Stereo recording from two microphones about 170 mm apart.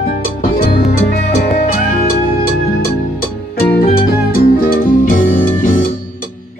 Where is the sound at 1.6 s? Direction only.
45° left (ahead or behind).